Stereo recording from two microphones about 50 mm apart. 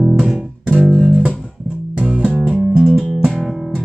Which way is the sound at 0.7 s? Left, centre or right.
Centre.